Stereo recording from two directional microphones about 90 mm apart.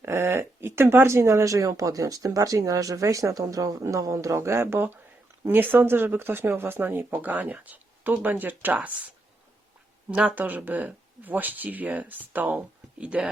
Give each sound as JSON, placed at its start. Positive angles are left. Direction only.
{"t": 0.0, "sound": "speech", "side_deg": -25}